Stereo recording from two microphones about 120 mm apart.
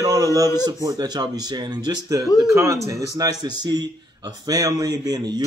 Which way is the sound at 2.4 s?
25° right (ahead or behind).